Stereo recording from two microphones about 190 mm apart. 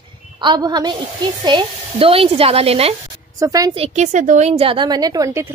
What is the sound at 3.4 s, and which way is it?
Speech, 20° right (ahead or behind).